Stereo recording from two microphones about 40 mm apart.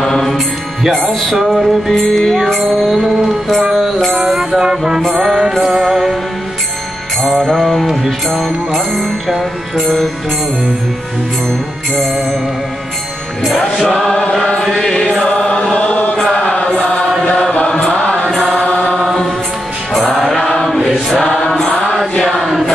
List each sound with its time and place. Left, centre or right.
0.0 s mantra: centre
0.8 s music: centre
7.3 s music: centre
13.4 s music: centre
15.2 s choir: left
15.9 s chant: left
16.3 s chant: left
18.0 s mantra: left
19.9 s music: centre
20.2 s mantra: left
22.2 s choir: centre